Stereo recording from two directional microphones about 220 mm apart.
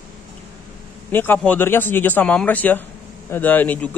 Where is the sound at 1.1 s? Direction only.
10° left (ahead or behind).